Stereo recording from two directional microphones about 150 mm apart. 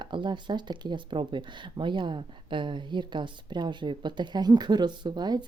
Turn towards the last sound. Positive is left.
turn(degrees=-30)  # may be behind; listen again after turning